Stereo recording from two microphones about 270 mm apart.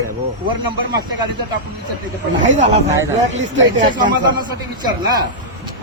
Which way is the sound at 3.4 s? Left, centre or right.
Right.